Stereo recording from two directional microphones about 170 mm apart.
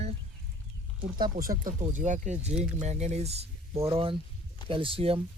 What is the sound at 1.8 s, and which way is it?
Speech, 45° right (ahead or behind).